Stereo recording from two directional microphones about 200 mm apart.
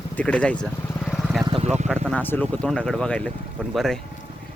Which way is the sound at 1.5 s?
35° right (ahead or behind).